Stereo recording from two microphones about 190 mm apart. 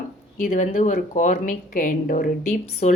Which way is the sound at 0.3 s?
45° left (ahead or behind).